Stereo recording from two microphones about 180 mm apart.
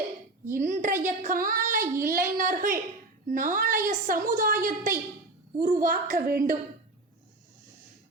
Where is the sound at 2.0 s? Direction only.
50° right (ahead or behind).